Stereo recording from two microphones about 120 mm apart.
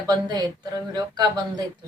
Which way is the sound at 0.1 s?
35° right (ahead or behind).